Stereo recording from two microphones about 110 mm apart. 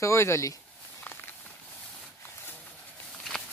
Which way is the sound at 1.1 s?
20° left (ahead or behind).